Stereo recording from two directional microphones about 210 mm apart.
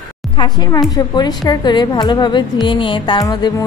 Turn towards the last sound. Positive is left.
turn(degrees=20)  # may be behind; listen again after turning